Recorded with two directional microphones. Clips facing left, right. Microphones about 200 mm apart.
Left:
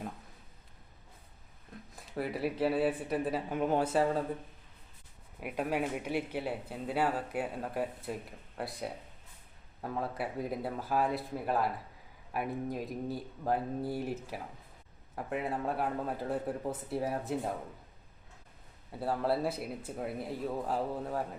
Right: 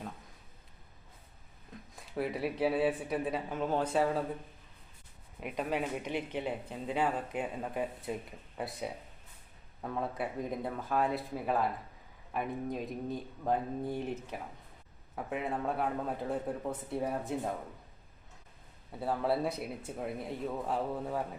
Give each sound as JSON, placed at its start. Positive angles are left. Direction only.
{"t": 2.1, "sound": "speech", "side_deg": 0}
{"t": 3.6, "sound": "speech", "side_deg": 15}
{"t": 3.9, "sound": "speech", "side_deg": 0}
{"t": 5.4, "sound": "speech", "side_deg": 10}
{"t": 18.9, "sound": "speech", "side_deg": 0}